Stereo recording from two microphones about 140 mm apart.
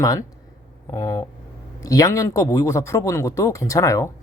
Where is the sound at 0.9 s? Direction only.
20° left (ahead or behind).